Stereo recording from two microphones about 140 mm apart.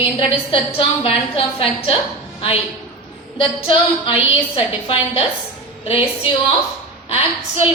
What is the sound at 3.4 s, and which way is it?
A woman's voice, 35° left (ahead or behind).